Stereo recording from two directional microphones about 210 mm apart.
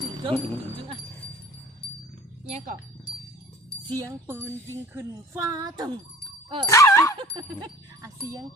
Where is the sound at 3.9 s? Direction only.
15° right (ahead or behind).